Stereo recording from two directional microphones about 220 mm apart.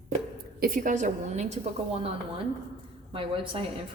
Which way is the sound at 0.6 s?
40° right (ahead or behind).